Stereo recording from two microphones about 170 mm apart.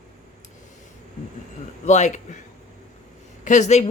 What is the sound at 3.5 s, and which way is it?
Speech, 45° left (ahead or behind).